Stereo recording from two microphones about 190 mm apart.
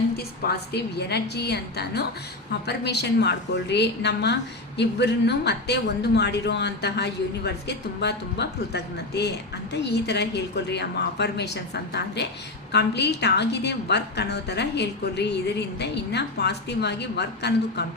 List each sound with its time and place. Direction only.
0.2 s a woman's voice: 55° left (ahead or behind)